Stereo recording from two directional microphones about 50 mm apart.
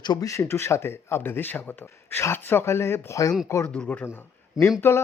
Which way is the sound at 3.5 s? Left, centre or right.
Left.